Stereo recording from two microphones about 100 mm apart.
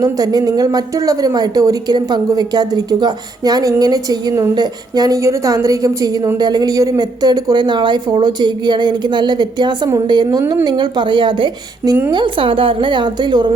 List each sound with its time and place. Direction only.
0.0 s speech: 40° right (ahead or behind)